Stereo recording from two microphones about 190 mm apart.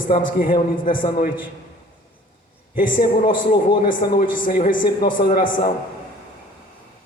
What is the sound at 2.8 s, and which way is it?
A man's voice, 45° left (ahead or behind).